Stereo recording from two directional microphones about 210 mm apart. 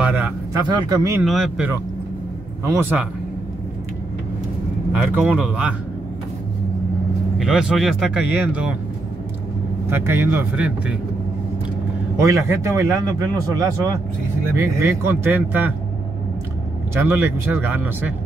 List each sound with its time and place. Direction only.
0.0 s a sound: 5° right (ahead or behind)
0.6 s speech: 20° right (ahead or behind)
1.2 s speech: centre (ahead or behind)
2.6 s a man's voice: 10° right (ahead or behind)
5.2 s speech: 5° right (ahead or behind)
7.3 s speech: centre (ahead or behind)
9.8 s a man's voice: 10° right (ahead or behind)
12.2 s a man's voice: 15° right (ahead or behind)
16.9 s a man's voice: 10° right (ahead or behind)